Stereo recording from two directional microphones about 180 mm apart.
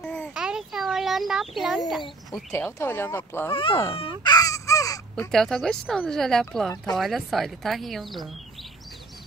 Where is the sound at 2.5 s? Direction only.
15° left (ahead or behind).